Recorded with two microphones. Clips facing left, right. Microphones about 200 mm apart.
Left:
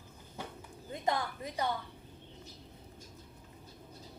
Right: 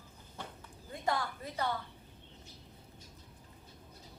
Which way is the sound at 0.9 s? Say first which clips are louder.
Left 1 dB; 20° left (ahead or behind).